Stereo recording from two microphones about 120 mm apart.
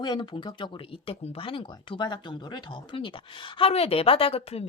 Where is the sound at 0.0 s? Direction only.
40° left (ahead or behind).